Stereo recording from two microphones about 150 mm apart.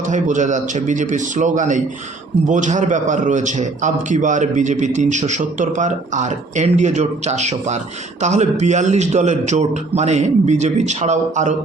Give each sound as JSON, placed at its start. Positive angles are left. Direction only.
{"t": 0.1, "sound": "a man's voice", "side_deg": -55}